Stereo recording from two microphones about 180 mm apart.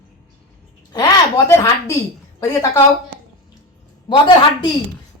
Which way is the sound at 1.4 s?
15° left (ahead or behind).